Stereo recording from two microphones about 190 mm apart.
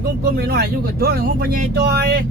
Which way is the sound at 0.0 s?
55° right (ahead or behind).